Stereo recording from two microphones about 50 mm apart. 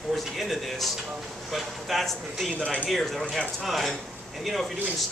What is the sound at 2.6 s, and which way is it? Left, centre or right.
Speech, left.